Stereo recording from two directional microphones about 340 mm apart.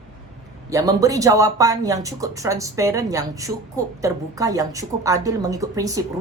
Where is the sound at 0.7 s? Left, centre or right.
Centre.